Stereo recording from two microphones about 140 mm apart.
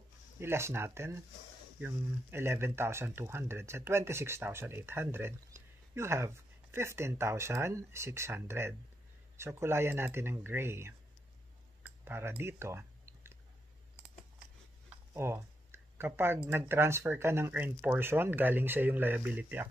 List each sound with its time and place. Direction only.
0.4 s speech: 20° right (ahead or behind)
11.8 s chewing: 15° right (ahead or behind)
15.1 s a sound: 20° right (ahead or behind)
16.4 s speech: 15° right (ahead or behind)